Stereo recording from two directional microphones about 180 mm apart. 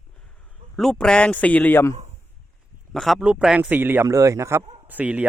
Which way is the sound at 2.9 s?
Centre (ahead or behind).